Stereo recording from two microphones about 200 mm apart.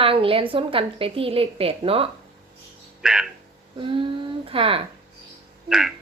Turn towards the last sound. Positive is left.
turn(degrees=-5)  # may be behind; listen again after turning